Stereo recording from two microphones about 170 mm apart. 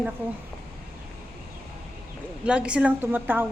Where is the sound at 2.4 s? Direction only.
5° right (ahead or behind).